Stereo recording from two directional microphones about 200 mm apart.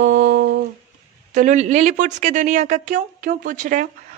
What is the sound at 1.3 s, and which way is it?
A woman's voice, 40° right (ahead or behind).